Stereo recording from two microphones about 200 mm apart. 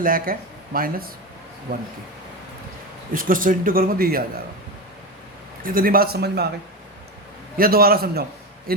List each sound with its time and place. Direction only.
0.0 s speech: 45° right (ahead or behind)
3.1 s speech: 45° right (ahead or behind)
5.6 s speech: 45° right (ahead or behind)
7.5 s speech: 45° right (ahead or behind)